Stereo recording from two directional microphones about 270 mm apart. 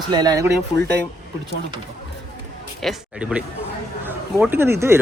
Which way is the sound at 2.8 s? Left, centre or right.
Centre.